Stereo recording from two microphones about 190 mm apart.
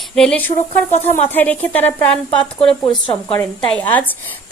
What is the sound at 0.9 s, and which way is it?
Speech, 35° left (ahead or behind).